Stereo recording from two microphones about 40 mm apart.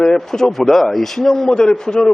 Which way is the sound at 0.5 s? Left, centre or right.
Centre.